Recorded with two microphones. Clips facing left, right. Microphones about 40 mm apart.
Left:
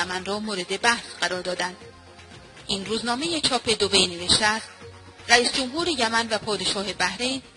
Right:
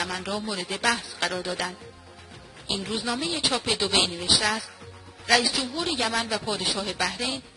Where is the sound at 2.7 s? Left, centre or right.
Centre.